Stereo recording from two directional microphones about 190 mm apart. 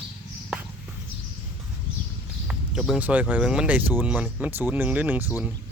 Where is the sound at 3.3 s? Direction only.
5° right (ahead or behind).